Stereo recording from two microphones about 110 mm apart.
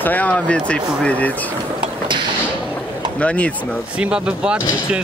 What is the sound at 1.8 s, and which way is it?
Vehicle, 45° right (ahead or behind).